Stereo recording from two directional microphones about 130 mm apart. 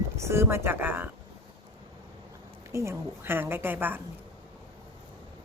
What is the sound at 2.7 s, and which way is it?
Speech, 20° right (ahead or behind).